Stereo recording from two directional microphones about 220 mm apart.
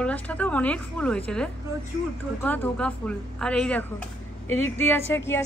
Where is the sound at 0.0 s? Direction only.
5° left (ahead or behind).